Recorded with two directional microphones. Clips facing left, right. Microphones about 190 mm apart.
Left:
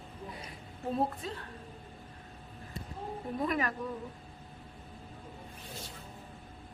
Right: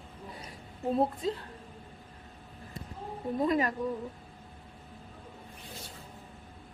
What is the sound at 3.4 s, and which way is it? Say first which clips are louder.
Speech: right 5 dB; 30° right (ahead or behind).